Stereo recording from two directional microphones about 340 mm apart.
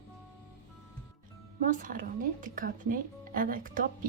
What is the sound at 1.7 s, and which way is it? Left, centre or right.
Speech, right.